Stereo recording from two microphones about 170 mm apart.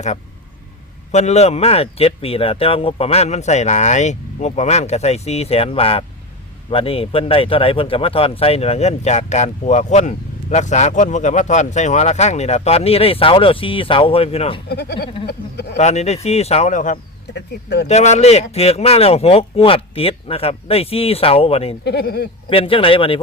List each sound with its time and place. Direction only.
1.1 s a man's voice: 40° left (ahead or behind)
14.7 s speech: 75° left (ahead or behind)
15.8 s a man's voice: 40° left (ahead or behind)
17.3 s speech: 80° left
17.8 s a man's voice: 40° left (ahead or behind)
21.8 s speech: 75° left (ahead or behind)
22.4 s a man's voice: 30° left (ahead or behind)